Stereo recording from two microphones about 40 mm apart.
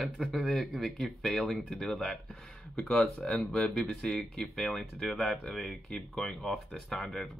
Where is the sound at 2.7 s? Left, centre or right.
Left.